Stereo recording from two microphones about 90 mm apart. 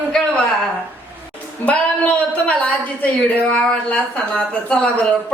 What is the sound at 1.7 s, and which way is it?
Speech, 15° left (ahead or behind).